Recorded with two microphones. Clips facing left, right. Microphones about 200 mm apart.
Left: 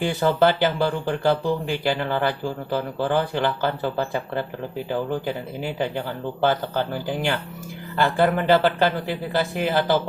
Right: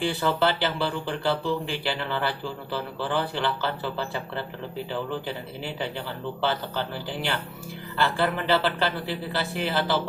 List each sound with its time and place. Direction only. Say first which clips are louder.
0.2 s speech: left 9 dB; 45° left (ahead or behind)